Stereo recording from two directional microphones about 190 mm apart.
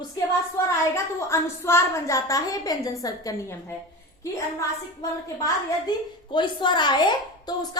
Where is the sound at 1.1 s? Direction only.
15° left (ahead or behind).